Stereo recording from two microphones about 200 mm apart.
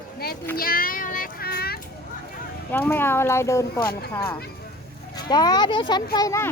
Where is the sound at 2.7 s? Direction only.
10° left (ahead or behind).